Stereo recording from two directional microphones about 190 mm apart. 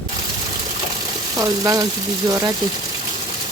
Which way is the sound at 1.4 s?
15° right (ahead or behind).